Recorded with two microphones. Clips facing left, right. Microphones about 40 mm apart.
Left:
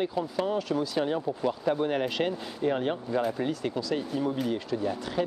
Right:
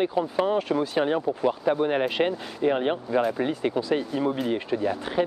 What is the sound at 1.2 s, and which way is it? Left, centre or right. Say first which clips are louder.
Speech: right 4 dB; centre.